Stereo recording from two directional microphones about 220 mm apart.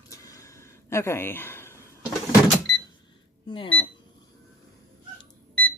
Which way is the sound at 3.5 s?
25° left (ahead or behind).